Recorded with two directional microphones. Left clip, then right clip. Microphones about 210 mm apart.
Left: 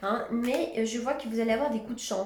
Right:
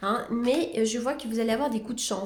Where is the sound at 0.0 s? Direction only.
50° right (ahead or behind).